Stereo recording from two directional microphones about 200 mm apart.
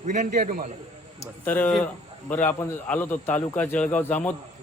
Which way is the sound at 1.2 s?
10° left (ahead or behind).